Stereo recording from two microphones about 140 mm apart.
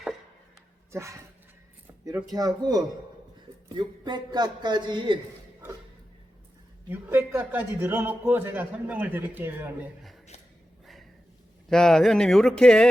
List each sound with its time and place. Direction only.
0.9 s speech: 20° right (ahead or behind)
2.3 s a man's voice: 30° right (ahead or behind)
6.8 s a man's voice: 15° right (ahead or behind)
11.7 s speech: 5° left (ahead or behind)